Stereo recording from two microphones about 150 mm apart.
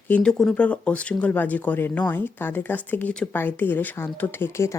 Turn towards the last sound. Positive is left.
turn(degrees=15)  # may be behind; listen again after turning